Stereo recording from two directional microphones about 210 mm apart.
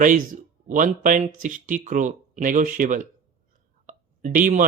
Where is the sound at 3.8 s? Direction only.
40° right (ahead or behind).